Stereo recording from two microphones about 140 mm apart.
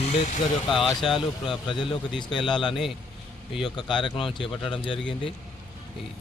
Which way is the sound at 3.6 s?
35° left (ahead or behind).